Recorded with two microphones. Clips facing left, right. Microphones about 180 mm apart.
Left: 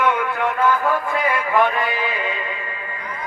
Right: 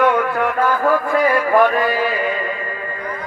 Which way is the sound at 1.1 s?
45° right (ahead or behind).